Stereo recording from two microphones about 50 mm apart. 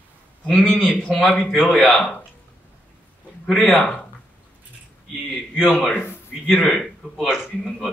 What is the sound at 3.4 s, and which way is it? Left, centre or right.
Speech, centre.